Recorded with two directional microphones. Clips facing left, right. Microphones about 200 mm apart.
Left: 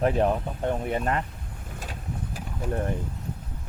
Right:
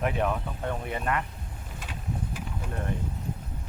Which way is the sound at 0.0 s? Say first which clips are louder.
Left 5 dB; 35° left (ahead or behind).